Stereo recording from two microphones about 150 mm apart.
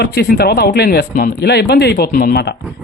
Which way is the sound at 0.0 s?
90° left.